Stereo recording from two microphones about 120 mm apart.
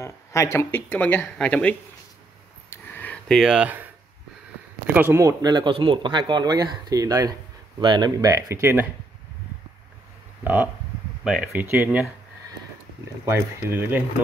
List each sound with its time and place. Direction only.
0.0 s speech: 25° left (ahead or behind)
2.7 s a sound: 15° left (ahead or behind)
3.3 s speech: 5° right (ahead or behind)
4.9 s speech: 20° right (ahead or behind)
5.4 s speech: 35° right (ahead or behind); by 8.8 s 20° right (ahead or behind)
10.4 s speech: 15° right (ahead or behind)
11.2 s speech: 5° right (ahead or behind)
11.5 s speech: 15° right (ahead or behind)
13.2 s speech: 20° right (ahead or behind)